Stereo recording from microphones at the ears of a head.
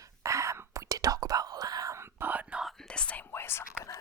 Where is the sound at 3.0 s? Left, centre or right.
Left.